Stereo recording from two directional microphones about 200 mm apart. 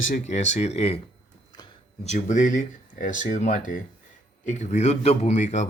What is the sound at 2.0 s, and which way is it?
Speech, 35° left (ahead or behind).